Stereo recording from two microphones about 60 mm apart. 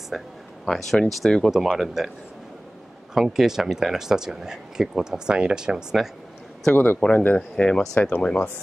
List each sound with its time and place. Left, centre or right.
0.7 s speech: centre
3.2 s speech: centre
6.7 s a man's voice: left
7.0 s speech: centre